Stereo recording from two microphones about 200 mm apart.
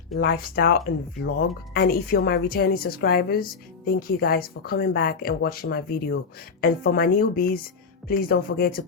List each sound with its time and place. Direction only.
0.2 s speech: 50° left (ahead or behind)